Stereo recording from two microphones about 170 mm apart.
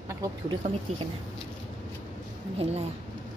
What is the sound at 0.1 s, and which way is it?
Speech, 20° right (ahead or behind).